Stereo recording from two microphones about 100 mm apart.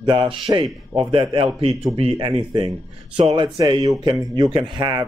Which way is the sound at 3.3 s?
45° right (ahead or behind).